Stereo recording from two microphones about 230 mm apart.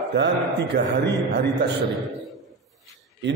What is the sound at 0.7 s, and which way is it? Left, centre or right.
Speech, right.